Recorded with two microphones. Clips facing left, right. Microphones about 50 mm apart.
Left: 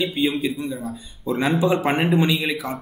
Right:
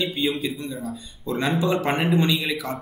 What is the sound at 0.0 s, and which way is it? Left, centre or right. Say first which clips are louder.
A man's voice: left 3 dB; centre.